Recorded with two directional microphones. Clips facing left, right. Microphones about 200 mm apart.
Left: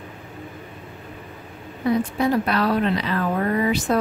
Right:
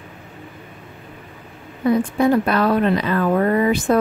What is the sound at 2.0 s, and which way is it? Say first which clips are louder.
Speech: right 5 dB; 50° right (ahead or behind).